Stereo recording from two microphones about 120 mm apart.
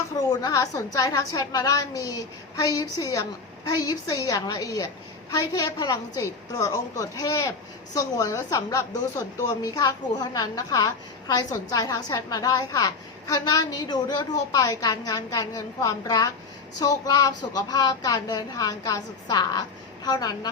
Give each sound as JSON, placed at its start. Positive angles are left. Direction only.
{"t": 0.2, "sound": "a woman's voice", "side_deg": 35}